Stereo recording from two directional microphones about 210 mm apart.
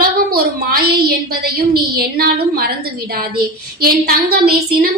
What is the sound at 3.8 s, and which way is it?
A woman's voice, 45° right (ahead or behind).